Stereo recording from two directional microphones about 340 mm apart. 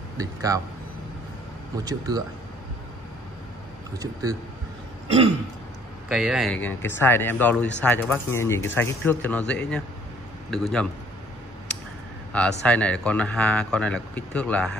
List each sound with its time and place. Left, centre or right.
0.2 s speech: centre
1.9 s speech: centre
4.0 s speech: centre
6.0 s speech: centre
12.3 s speech: centre